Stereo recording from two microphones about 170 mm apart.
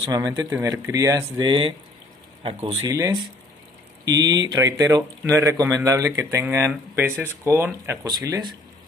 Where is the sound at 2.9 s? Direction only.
20° right (ahead or behind).